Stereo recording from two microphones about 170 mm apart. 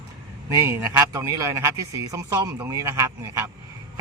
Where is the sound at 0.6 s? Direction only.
20° right (ahead or behind).